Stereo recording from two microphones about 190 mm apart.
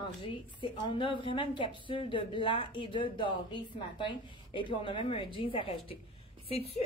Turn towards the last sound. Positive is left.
turn(degrees=30)  # may be behind; listen again after turning